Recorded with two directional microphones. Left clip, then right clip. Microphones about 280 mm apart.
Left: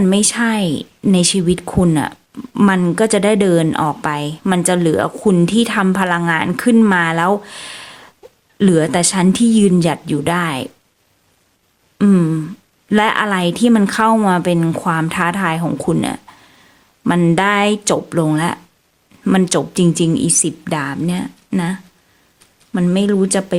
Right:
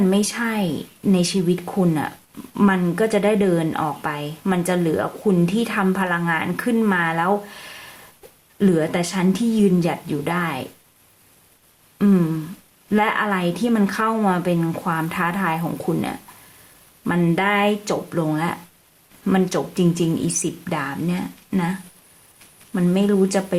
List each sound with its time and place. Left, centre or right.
0.0 s speech: left
11.9 s speech: left